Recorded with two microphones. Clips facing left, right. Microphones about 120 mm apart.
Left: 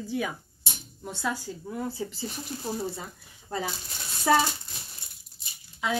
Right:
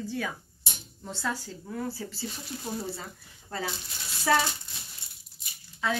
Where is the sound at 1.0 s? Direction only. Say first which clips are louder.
Left 2 dB; 15° left (ahead or behind).